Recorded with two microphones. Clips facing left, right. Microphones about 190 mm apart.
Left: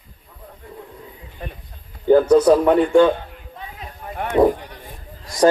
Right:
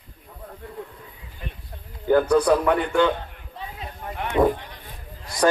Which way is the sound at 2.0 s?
25° left (ahead or behind).